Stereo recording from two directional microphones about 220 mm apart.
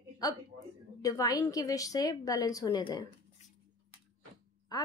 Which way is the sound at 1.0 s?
15° left (ahead or behind).